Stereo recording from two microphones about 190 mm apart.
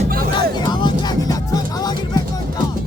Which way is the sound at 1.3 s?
20° left (ahead or behind).